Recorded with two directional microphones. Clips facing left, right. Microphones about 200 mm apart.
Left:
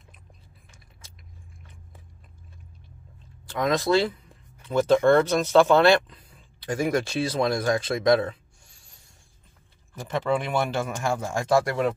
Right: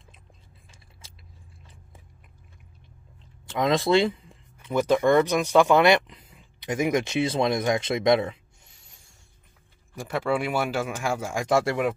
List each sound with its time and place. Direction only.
3.4 s speech: 25° right (ahead or behind)
8.3 s a sound: 20° right (ahead or behind)
9.9 s speech: 10° right (ahead or behind)